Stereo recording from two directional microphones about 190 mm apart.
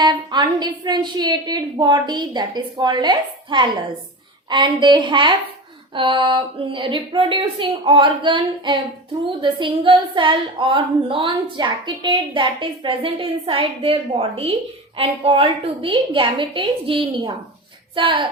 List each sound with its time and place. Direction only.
0.0 s a woman's voice: 25° right (ahead or behind)